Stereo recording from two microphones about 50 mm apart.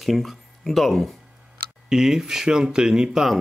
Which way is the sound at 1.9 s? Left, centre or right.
Centre.